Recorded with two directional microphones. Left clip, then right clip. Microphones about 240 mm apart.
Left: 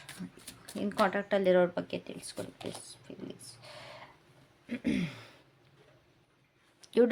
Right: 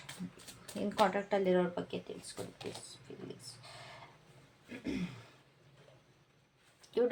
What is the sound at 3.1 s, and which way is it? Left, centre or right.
Speech, left.